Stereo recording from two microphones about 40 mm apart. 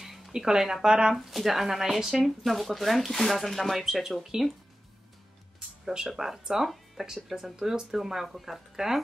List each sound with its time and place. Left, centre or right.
0.3 s speech: centre
1.1 s speech: centre
6.1 s speech: centre